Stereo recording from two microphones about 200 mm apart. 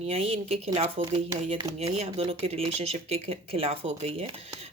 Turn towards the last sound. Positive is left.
turn(degrees=-30)  # may be behind; listen again after turning